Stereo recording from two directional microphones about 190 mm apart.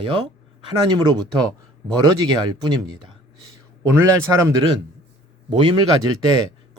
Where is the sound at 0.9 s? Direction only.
20° right (ahead or behind).